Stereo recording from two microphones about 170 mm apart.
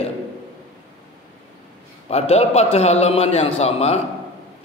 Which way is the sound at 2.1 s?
35° left (ahead or behind).